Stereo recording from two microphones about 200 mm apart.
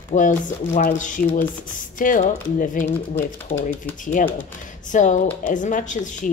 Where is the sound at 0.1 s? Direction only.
40° left (ahead or behind).